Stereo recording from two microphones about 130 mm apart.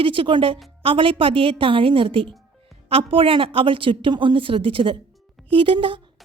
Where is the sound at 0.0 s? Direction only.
40° right (ahead or behind).